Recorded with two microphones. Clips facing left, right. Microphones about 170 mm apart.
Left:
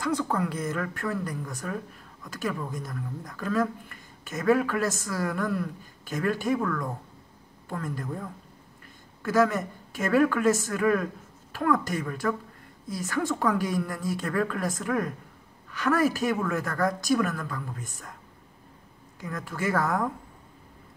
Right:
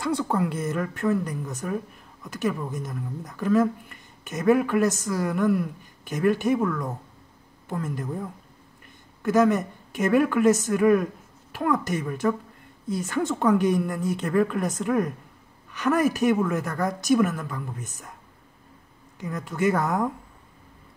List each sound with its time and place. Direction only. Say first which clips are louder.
0.0 s a woman's voice: right 2 dB; 25° right (ahead or behind)
19.1 s speech: right 4 dB; 20° right (ahead or behind)